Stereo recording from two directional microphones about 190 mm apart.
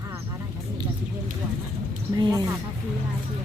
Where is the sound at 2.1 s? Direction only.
20° right (ahead or behind).